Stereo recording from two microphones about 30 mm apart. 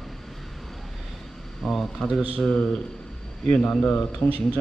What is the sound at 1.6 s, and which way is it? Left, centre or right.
Speech, centre.